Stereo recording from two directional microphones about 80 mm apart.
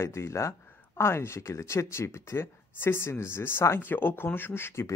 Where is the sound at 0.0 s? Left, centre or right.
Left.